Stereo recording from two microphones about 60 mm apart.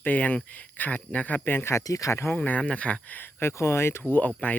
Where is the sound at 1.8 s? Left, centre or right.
Left.